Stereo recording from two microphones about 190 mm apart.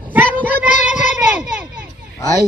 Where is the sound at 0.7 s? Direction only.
40° left (ahead or behind).